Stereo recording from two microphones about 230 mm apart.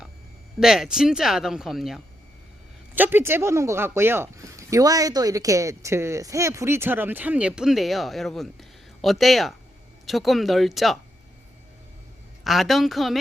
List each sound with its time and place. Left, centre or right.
0.6 s speech: centre
12.5 s speech: centre